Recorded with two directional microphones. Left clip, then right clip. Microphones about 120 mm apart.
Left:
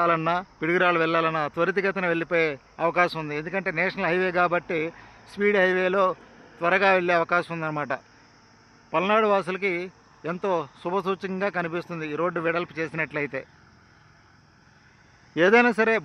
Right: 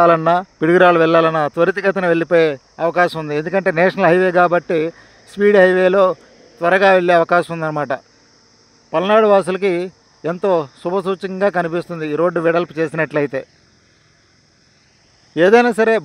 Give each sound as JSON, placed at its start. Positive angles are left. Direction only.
{"t": 0.0, "sound": "speech", "side_deg": -80}
{"t": 10.4, "sound": "speech", "side_deg": -60}
{"t": 11.4, "sound": "speech", "side_deg": -75}
{"t": 15.3, "sound": "speech", "side_deg": -50}